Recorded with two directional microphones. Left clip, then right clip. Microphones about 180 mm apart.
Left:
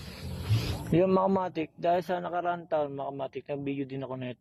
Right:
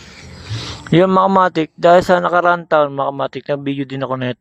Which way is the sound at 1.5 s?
40° right (ahead or behind).